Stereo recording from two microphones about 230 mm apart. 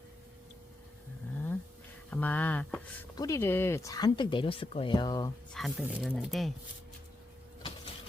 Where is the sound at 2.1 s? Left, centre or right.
Centre.